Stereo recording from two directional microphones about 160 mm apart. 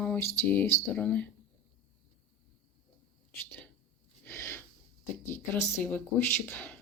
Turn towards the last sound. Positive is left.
turn(degrees=10)  # may be behind; listen again after turning